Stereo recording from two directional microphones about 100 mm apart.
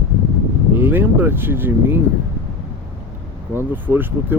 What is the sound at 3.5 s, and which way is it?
Speech, 20° right (ahead or behind).